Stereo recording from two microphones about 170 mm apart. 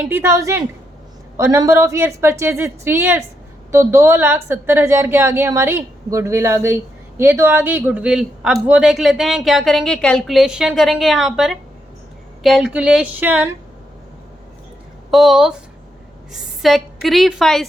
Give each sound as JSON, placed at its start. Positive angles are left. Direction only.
{"t": 0.1, "sound": "a woman's voice", "side_deg": -15}
{"t": 15.1, "sound": "a woman's voice", "side_deg": 0}